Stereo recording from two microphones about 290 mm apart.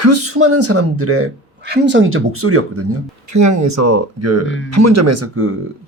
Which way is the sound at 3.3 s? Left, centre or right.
Right.